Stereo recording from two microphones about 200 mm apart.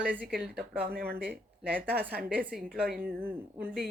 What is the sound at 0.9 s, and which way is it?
Speech, 50° right (ahead or behind).